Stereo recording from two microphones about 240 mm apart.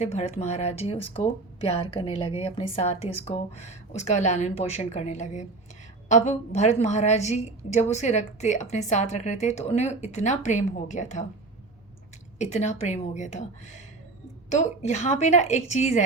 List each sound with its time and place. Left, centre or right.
0.0 s speech: left
12.4 s speech: left
14.5 s speech: left